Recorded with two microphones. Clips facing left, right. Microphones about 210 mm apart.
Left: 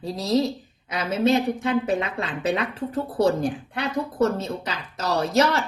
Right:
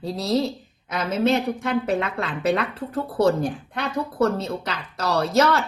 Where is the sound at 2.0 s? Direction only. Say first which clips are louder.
Right 1 dB; 15° left (ahead or behind).